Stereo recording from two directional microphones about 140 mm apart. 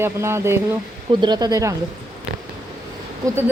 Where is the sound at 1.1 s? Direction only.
35° right (ahead or behind).